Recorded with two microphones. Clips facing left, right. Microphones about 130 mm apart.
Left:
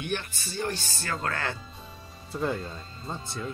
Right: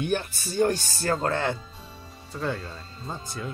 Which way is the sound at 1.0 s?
30° right (ahead or behind).